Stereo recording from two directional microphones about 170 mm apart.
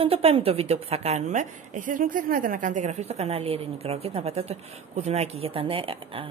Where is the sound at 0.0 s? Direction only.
35° right (ahead or behind).